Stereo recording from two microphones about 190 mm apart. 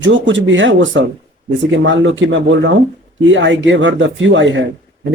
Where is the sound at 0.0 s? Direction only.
75° right (ahead or behind).